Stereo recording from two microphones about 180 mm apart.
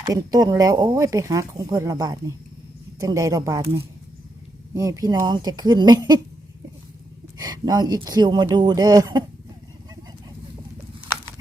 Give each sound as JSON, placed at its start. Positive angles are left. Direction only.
{"t": 0.0, "sound": "speech", "side_deg": -20}
{"t": 4.7, "sound": "speech", "side_deg": -20}
{"t": 7.3, "sound": "speech", "side_deg": -20}